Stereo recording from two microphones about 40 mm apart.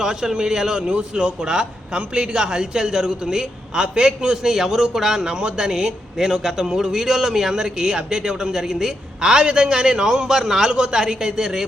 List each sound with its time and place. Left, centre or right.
0.0 s a man's voice: centre
5.2 s a man's voice: right